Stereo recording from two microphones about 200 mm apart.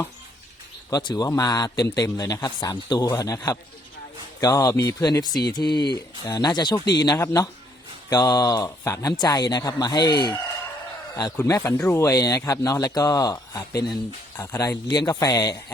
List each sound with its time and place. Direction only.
0.9 s speech: 20° left (ahead or behind)
11.3 s speech: 15° left (ahead or behind)